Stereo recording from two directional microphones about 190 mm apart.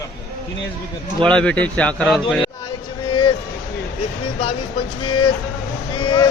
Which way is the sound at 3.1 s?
25° left (ahead or behind).